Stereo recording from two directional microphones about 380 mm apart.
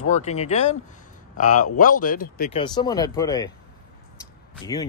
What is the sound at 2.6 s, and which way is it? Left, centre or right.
Speech, centre.